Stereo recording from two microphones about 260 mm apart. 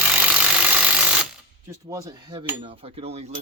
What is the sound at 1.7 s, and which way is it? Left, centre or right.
Speech, centre.